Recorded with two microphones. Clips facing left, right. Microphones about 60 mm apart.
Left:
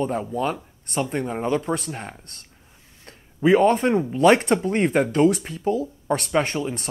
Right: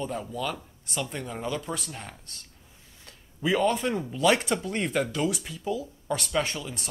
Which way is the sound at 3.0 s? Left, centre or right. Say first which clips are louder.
Left 9 dB; left.